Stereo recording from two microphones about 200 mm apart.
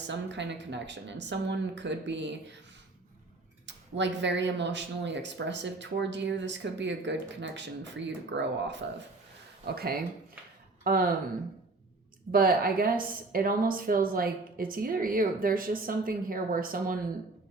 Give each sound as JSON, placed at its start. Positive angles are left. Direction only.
{"t": 0.1, "sound": "speech", "side_deg": -60}
{"t": 3.7, "sound": "speech", "side_deg": -60}
{"t": 9.6, "sound": "a woman's voice", "side_deg": -50}
{"t": 12.3, "sound": "a woman's voice", "side_deg": -45}